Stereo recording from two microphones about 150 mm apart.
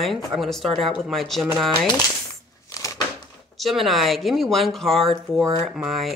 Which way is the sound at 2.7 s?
20° left (ahead or behind).